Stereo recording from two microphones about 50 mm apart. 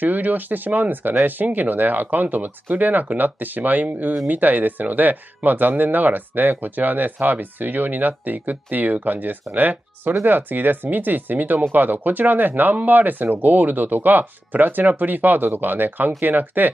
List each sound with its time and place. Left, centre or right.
0.0 s speech: right